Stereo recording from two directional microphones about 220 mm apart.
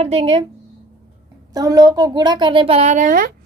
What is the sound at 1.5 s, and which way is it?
A woman's voice, 15° right (ahead or behind).